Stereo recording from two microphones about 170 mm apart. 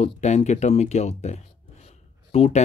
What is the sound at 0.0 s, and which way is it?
Speech, 40° left (ahead or behind).